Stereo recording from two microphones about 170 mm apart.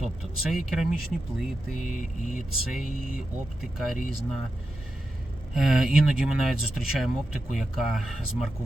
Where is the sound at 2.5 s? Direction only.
Centre (ahead or behind).